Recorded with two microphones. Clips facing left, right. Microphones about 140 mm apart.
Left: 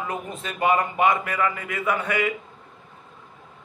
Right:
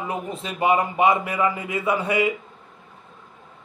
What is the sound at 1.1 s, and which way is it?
A man's voice, 15° right (ahead or behind).